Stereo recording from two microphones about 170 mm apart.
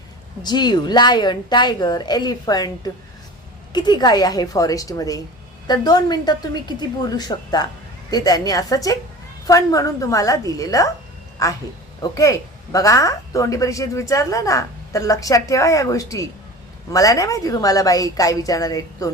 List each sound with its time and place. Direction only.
0.4 s a woman's voice: 25° left (ahead or behind)